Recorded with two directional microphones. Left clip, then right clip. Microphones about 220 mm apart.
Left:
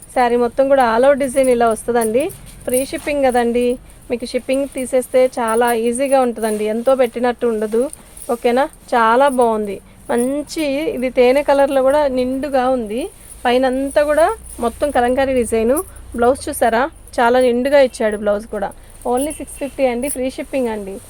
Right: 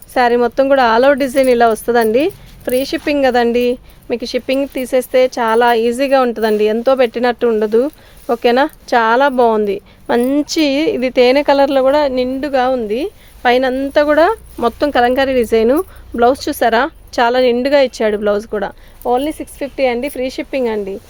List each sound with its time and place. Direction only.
0.1 s speech: 50° right (ahead or behind)